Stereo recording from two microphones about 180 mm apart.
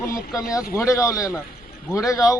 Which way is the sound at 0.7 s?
15° left (ahead or behind).